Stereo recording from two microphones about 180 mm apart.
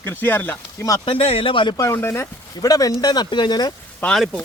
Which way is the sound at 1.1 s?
30° left (ahead or behind).